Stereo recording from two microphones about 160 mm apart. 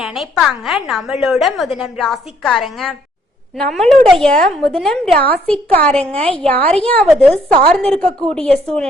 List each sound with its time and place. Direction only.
0.0 s a woman's voice: centre (ahead or behind)